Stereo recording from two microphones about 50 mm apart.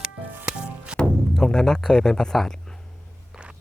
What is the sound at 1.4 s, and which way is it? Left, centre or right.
A man's voice, centre.